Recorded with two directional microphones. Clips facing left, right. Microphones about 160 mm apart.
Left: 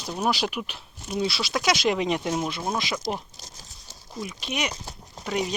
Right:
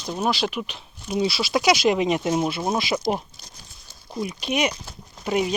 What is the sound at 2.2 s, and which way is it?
Speech, 25° right (ahead or behind).